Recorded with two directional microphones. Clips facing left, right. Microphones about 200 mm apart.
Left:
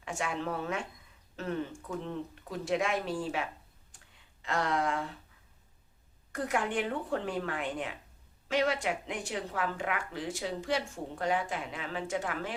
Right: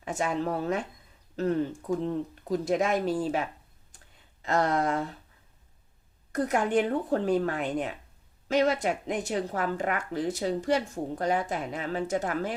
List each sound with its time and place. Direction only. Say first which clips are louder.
0.0 s a woman's voice: right 6 dB; 40° right (ahead or behind)
4.4 s a woman's voice: right 5 dB; 40° right (ahead or behind)
6.3 s a woman's voice: right 6 dB; 40° right (ahead or behind)